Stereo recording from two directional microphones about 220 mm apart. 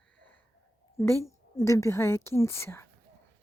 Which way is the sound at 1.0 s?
10° left (ahead or behind).